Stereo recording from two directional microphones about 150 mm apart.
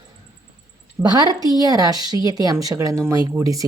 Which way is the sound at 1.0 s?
25° right (ahead or behind).